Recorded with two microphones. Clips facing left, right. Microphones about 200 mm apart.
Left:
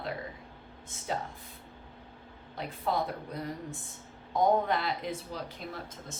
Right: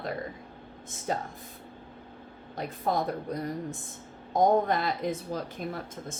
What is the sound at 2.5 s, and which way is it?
Speech, 45° right (ahead or behind).